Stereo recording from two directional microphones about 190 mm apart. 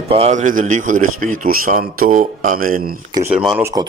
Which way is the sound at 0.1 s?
35° right (ahead or behind).